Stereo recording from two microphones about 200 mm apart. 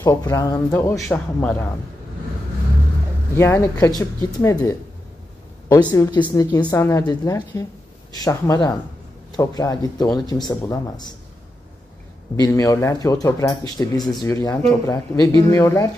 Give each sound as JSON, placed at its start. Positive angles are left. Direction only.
{"t": 0.0, "sound": "a woman's voice", "side_deg": 20}
{"t": 3.3, "sound": "a woman's voice", "side_deg": 15}
{"t": 12.4, "sound": "a woman's voice", "side_deg": 15}